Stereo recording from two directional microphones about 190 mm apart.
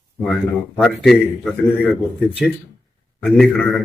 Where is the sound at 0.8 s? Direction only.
5° left (ahead or behind).